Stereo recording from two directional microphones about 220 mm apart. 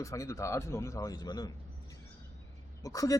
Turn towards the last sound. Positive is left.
turn(degrees=15)  # may be behind; listen again after turning